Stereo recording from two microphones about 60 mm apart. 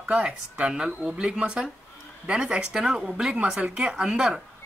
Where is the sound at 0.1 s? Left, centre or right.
Centre.